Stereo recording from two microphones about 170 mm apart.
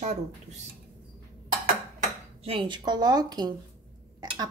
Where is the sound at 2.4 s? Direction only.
30° right (ahead or behind).